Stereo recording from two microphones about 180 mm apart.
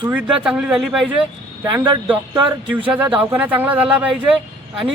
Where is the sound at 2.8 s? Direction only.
10° right (ahead or behind).